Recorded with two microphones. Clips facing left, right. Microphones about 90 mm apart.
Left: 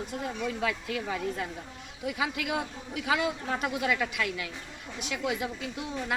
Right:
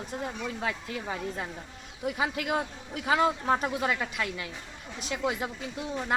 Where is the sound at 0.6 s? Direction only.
30° right (ahead or behind).